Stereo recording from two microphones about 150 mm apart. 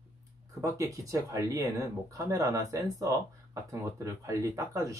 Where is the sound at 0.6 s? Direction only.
20° right (ahead or behind).